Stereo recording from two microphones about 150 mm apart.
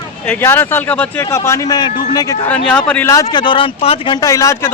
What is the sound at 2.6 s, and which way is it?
Speech, 5° left (ahead or behind).